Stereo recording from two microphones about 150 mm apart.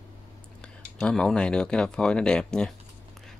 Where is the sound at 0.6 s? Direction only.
5° left (ahead or behind).